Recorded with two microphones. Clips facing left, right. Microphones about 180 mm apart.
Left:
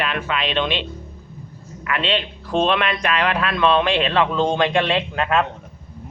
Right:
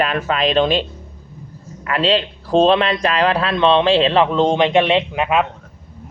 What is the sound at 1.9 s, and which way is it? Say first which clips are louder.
Speech: right 5 dB; 35° right (ahead or behind).